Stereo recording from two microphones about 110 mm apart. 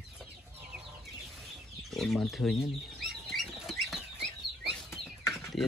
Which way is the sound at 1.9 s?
Centre (ahead or behind).